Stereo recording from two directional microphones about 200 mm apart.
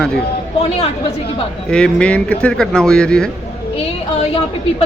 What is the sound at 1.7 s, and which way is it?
Speech, 5° left (ahead or behind).